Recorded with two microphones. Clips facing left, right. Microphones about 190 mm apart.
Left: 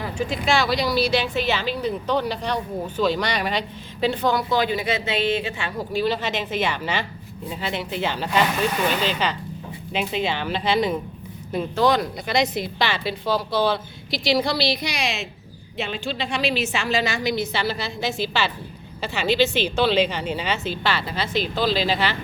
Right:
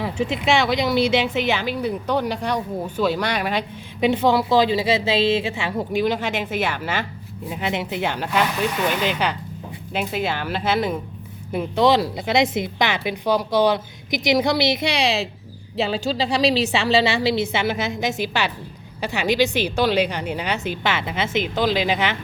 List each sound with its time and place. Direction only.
0.2 s a woman's voice: 20° right (ahead or behind)
4.0 s speech: 20° right (ahead or behind)
7.5 s a woman's voice: 15° right (ahead or behind)
11.5 s a woman's voice: 20° right (ahead or behind)